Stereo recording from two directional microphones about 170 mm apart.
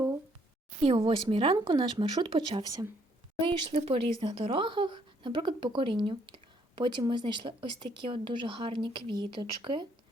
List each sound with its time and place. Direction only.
0.8 s speech: 30° right (ahead or behind)